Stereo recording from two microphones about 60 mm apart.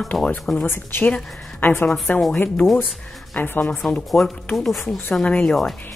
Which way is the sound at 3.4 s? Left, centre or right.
Left.